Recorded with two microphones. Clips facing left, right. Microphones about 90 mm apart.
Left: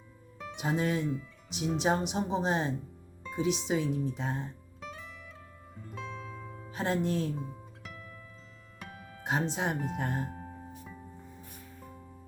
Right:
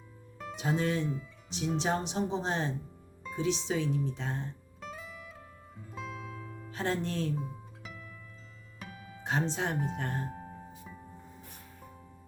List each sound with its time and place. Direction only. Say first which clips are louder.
0.5 s speech: even; 15° left (ahead or behind)
4.8 s music: right 1 dB; 5° right (ahead or behind)
6.7 s speech: left 3 dB; 10° left (ahead or behind)
7.3 s music: right 1 dB; centre (ahead or behind)
9.2 s speech: left 1 dB; 10° left (ahead or behind)
11.8 s music: left 3 dB; centre (ahead or behind)